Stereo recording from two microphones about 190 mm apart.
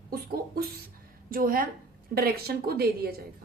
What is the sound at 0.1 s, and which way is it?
A woman's voice, 50° right (ahead or behind).